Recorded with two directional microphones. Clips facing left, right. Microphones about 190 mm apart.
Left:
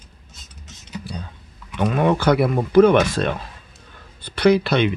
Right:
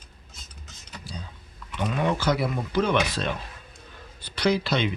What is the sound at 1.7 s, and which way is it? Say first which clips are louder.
Speech: left 7 dB; 55° left (ahead or behind).